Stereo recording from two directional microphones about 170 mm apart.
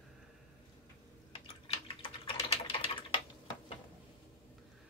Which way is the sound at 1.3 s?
35° left (ahead or behind).